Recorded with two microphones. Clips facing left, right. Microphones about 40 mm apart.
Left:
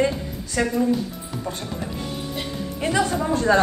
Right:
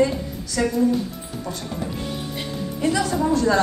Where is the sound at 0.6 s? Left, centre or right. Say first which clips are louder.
Right 1 dB; left.